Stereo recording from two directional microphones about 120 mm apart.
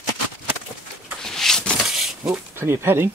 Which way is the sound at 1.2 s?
5° left (ahead or behind).